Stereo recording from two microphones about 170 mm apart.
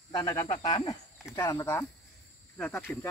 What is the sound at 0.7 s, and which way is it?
Speech, 25° left (ahead or behind).